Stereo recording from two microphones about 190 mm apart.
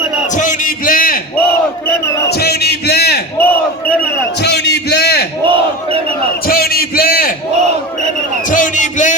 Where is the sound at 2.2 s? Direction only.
55° left (ahead or behind).